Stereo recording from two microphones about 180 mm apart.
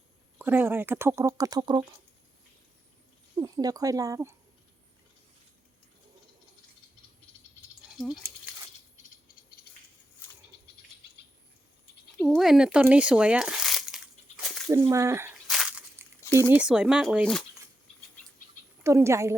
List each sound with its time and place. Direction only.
0.3 s speech: 10° right (ahead or behind)
3.3 s speech: 20° right (ahead or behind)
7.9 s speech: centre (ahead or behind)
9.6 s a sound: 60° left (ahead or behind)
12.4 s a sound: 5° right (ahead or behind)
14.7 s speech: 15° right (ahead or behind)
15.4 s a sound: 5° right (ahead or behind)
16.3 s speech: 10° right (ahead or behind)
18.8 s speech: 15° right (ahead or behind)